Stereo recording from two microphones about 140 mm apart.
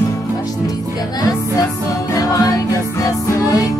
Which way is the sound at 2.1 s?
25° left (ahead or behind).